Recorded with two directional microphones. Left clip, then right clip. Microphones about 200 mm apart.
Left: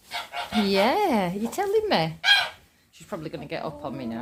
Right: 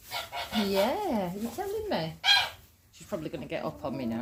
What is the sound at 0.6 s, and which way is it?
Speech, 35° left (ahead or behind).